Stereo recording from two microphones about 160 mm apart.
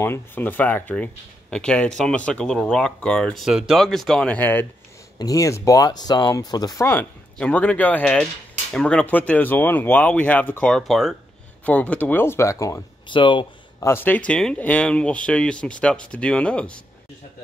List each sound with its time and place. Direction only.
0.0 s speech: 15° left (ahead or behind)
13.1 s speech: 30° left (ahead or behind)
13.7 s speech: 15° left (ahead or behind)